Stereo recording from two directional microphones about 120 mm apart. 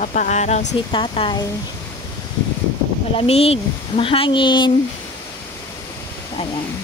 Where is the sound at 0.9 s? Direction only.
45° left (ahead or behind).